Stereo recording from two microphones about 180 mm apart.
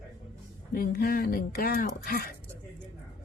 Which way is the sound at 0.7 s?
55° left (ahead or behind).